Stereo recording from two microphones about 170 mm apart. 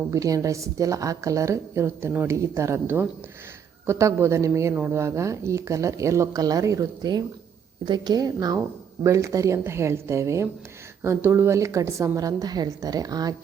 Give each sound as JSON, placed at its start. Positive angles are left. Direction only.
{"t": 0.1, "sound": "a woman's voice", "side_deg": -20}